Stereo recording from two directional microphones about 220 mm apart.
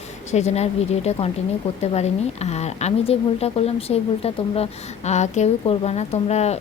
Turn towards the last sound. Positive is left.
turn(degrees=30)  # may be behind; listen again after turning